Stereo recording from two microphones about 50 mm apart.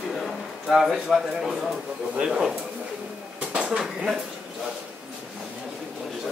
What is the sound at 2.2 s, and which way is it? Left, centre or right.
Speech, centre.